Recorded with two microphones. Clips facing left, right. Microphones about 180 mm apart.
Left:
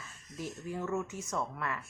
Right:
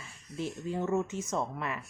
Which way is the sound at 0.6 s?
25° right (ahead or behind).